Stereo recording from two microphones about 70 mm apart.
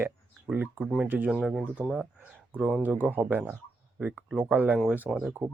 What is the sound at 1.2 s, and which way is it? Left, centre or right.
Speech, centre.